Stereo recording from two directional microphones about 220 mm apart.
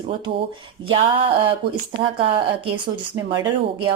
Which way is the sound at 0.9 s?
25° right (ahead or behind).